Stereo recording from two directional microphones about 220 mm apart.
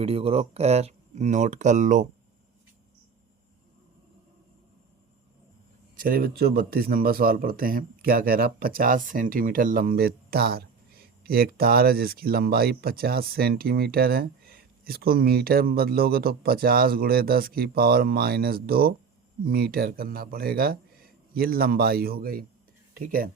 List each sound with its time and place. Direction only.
0.0 s speech: 25° right (ahead or behind)
6.0 s a man's voice: 40° right (ahead or behind)